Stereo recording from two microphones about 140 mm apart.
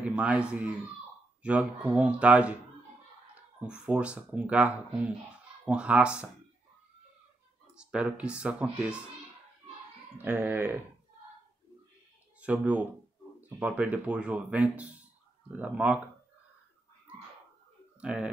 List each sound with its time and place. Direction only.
0.0 s speech: 10° right (ahead or behind)
3.6 s speech: 5° right (ahead or behind)
7.7 s speech: 5° right (ahead or behind)
10.1 s speech: 15° right (ahead or behind)
12.4 s speech: 10° right (ahead or behind)
18.0 s speech: 10° right (ahead or behind)